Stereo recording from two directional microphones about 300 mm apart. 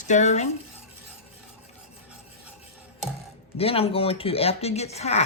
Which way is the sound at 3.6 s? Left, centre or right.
Centre.